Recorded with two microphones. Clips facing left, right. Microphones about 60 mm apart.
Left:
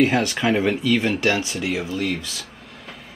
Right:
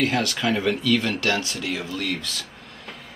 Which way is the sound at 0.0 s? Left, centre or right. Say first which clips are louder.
Left 4 dB; left.